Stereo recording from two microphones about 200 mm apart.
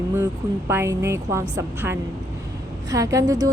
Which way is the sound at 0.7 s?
15° right (ahead or behind).